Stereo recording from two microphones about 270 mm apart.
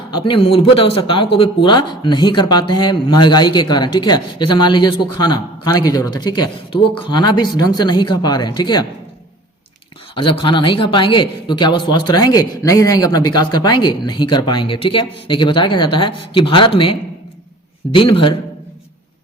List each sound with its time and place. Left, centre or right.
0.1 s a man's voice: centre
10.2 s a man's voice: centre
17.9 s a man's voice: centre